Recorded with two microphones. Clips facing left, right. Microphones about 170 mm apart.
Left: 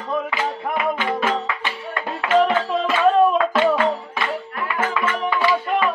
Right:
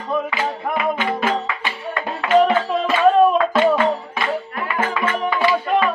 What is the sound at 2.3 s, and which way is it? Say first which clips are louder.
Music: right 2 dB; 10° right (ahead or behind).